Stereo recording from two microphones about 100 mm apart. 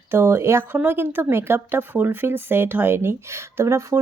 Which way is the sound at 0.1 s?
25° right (ahead or behind).